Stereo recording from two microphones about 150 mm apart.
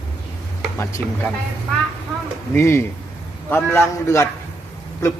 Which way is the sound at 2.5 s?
15° left (ahead or behind).